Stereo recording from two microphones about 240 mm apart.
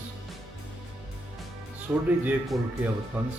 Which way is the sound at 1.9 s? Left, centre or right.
Centre.